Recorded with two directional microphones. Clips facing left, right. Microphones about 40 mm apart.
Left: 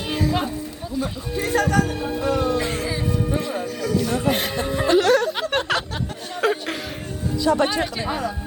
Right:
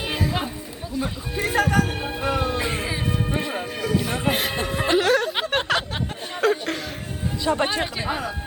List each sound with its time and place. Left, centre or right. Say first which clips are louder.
0.1 s music: left 5 dB; centre
0.9 s speech: left 1 dB; centre
1.9 s speech: left 2 dB; right
2.3 s music: left 2 dB; right
3.1 s music: left 2 dB; right
3.4 s music: left 1 dB; right
4.3 s speech: right 2 dB; centre
4.5 s speech: left 2 dB; right
4.9 s speech: left 2 dB; centre
5.7 s chatter: right 2 dB; centre
6.4 s chuckle: right 1 dB; centre
7.3 s music: left 4 dB; right
7.6 s music: left 2 dB; right
7.9 s speech: left 1 dB; centre